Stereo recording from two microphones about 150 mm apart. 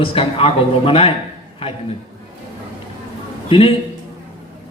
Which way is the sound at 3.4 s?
35° left (ahead or behind).